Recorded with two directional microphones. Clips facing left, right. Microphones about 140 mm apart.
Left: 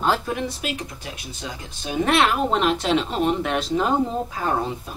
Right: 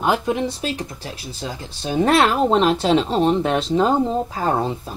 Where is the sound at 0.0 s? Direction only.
20° right (ahead or behind); by 4.9 s 35° right (ahead or behind).